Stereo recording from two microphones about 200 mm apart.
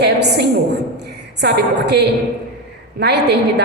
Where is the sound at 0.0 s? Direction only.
55° right (ahead or behind).